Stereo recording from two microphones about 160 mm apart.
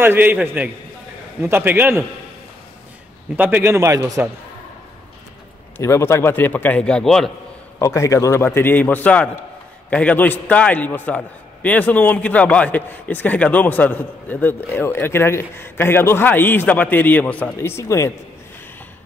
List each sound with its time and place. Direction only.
0.0 s a man's voice: 15° right (ahead or behind)
3.3 s a man's voice: 10° right (ahead or behind)
5.8 s a man's voice: 15° left (ahead or behind)
7.8 s a man's voice: 20° left (ahead or behind)